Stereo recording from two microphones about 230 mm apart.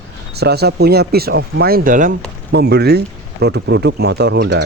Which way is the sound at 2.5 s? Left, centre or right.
Right.